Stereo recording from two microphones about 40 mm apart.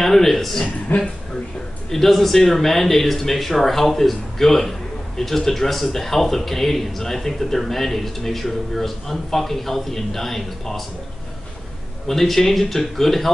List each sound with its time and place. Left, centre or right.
0.0 s a man's voice: centre
0.9 s speech: left
1.9 s speech: centre
12.1 s speech: centre